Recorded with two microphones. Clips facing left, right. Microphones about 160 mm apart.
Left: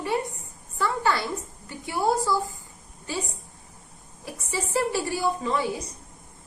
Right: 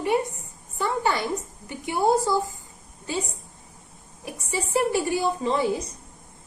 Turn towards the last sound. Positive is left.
turn(degrees=-25)  # may be behind; listen again after turning